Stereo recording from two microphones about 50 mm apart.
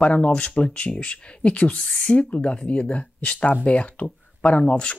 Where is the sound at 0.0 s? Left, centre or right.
Left.